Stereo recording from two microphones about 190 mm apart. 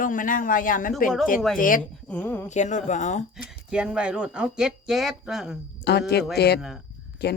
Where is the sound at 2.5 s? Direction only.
40° left (ahead or behind).